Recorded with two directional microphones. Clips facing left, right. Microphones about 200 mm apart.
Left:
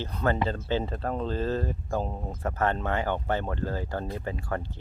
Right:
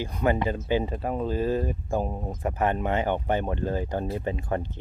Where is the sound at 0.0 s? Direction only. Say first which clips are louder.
Right 2 dB; 15° right (ahead or behind).